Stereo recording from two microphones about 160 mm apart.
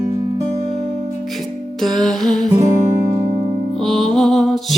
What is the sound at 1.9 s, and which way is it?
Music, 5° left (ahead or behind).